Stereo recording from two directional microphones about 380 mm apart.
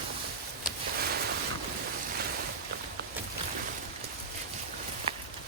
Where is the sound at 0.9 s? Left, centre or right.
Right.